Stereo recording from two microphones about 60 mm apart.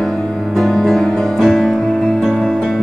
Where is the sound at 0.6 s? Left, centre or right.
Centre.